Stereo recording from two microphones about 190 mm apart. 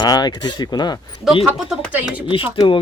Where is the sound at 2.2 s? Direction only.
25° left (ahead or behind).